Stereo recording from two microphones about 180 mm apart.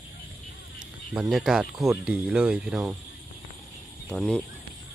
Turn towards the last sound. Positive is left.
turn(degrees=0)  # may be behind; listen again after turning